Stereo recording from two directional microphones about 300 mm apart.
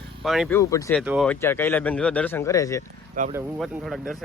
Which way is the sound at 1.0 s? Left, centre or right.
Centre.